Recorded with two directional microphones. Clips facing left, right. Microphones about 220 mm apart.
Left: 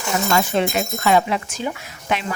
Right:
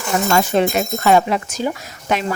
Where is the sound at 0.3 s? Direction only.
45° right (ahead or behind).